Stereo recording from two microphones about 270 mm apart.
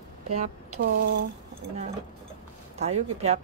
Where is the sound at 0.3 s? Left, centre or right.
Right.